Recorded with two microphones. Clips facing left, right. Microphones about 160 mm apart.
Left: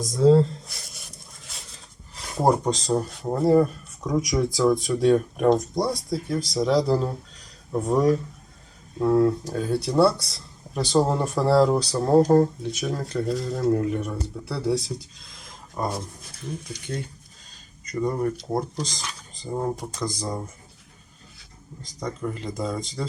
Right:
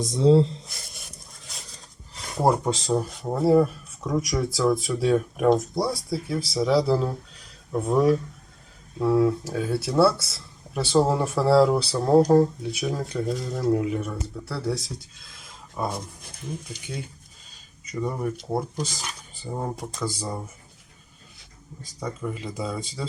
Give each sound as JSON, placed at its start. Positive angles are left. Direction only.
{"t": 0.1, "sound": "speech", "side_deg": -25}
{"t": 0.7, "sound": "speech", "side_deg": 0}
{"t": 16.8, "sound": "speech", "side_deg": -5}
{"t": 21.8, "sound": "speech", "side_deg": -10}